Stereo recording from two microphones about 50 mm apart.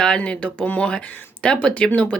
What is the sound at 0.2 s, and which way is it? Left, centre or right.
Speech, left.